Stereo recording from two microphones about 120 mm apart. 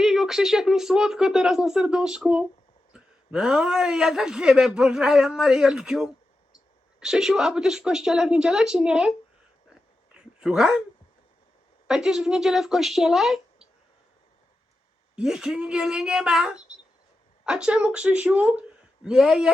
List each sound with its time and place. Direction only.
0.0 s a man's voice: 5° right (ahead or behind)
10.2 s a sound: 5° right (ahead or behind)
11.9 s a man's voice: 5° right (ahead or behind)
15.1 s a woman's voice: 5° right (ahead or behind)